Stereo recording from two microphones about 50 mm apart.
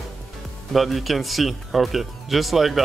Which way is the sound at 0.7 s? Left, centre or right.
Centre.